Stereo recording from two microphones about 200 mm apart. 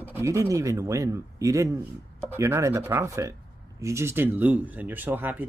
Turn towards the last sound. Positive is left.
turn(degrees=-10)  # may be behind; listen again after turning